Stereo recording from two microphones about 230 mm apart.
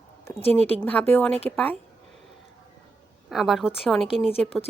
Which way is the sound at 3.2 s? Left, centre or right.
Centre.